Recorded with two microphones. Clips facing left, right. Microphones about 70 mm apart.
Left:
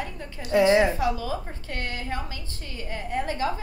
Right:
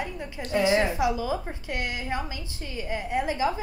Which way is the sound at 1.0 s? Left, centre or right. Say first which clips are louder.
Right 1 dB; centre.